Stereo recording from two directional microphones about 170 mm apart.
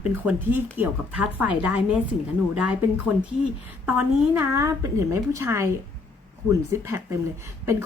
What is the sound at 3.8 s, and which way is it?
Speech, 10° right (ahead or behind).